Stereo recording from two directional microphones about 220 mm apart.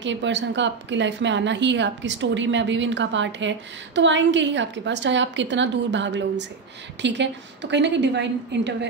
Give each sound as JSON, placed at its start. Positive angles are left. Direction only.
{"t": 0.0, "sound": "a woman's voice", "side_deg": -55}